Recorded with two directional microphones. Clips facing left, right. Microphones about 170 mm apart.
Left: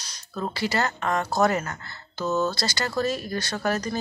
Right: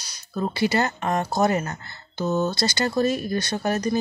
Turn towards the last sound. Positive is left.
turn(degrees=-20)  # may be behind; listen again after turning